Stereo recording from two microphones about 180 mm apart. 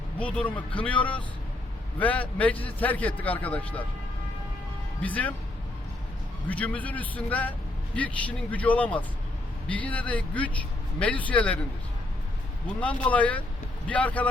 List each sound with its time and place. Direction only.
0.2 s a man's voice: 10° left (ahead or behind)
5.0 s a man's voice: 10° left (ahead or behind)
6.5 s a man's voice: 10° left (ahead or behind)
13.1 s a man's voice: 10° left (ahead or behind)